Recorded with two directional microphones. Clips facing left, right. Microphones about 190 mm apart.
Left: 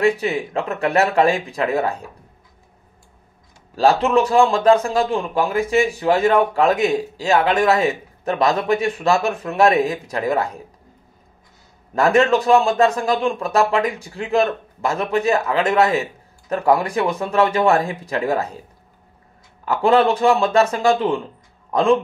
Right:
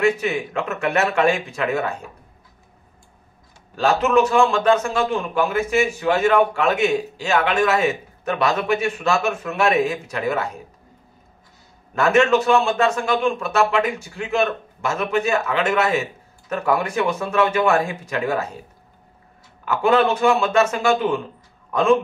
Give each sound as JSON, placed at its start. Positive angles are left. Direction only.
{"t": 0.0, "sound": "a man's voice", "side_deg": 35}
{"t": 3.7, "sound": "a man's voice", "side_deg": 35}
{"t": 11.9, "sound": "a man's voice", "side_deg": 35}
{"t": 19.6, "sound": "a man's voice", "side_deg": 35}